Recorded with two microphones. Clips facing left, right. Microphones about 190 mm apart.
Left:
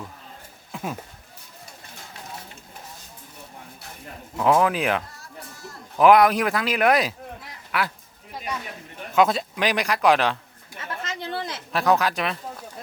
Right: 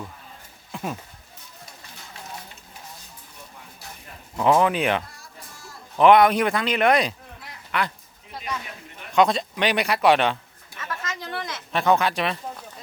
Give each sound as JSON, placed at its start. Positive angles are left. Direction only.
{"t": 0.7, "sound": "goat", "side_deg": 0}
{"t": 4.4, "sound": "speech", "side_deg": 0}
{"t": 9.1, "sound": "speech", "side_deg": 5}
{"t": 10.8, "sound": "a sound", "side_deg": 30}
{"t": 11.7, "sound": "speech", "side_deg": 0}